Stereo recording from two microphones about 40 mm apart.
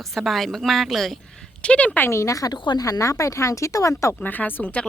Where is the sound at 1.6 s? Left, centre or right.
Left.